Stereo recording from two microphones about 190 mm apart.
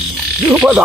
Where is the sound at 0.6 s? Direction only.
5° right (ahead or behind).